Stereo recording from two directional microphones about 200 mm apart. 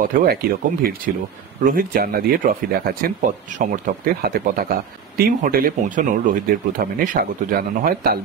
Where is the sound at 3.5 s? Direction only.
45° right (ahead or behind).